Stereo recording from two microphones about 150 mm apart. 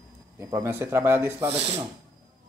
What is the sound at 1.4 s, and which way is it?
Speech, 45° right (ahead or behind).